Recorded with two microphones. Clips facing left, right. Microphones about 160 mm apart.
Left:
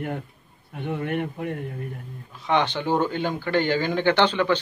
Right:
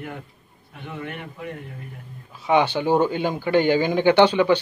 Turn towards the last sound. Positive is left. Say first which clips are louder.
# right 5 dB
turn(degrees=-10)  # may be behind; listen again after turning